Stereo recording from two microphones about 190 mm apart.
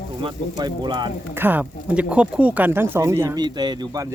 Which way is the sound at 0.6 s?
25° right (ahead or behind).